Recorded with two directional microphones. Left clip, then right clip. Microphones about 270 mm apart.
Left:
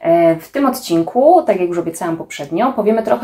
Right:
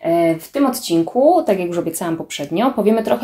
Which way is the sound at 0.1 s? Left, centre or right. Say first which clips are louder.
Left 5 dB; centre.